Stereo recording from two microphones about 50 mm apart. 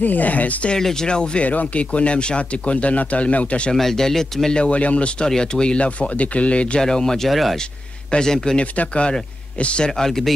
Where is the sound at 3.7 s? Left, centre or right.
Centre.